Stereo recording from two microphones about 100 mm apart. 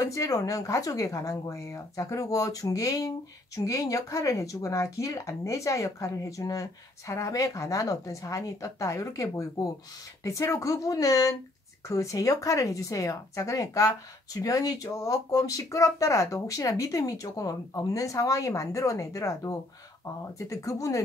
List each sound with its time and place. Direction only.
0.0 s speech: 30° left (ahead or behind)